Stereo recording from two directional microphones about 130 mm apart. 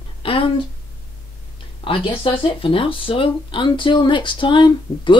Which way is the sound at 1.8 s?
40° left (ahead or behind).